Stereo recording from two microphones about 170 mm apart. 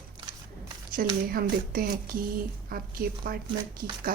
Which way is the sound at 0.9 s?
60° right (ahead or behind).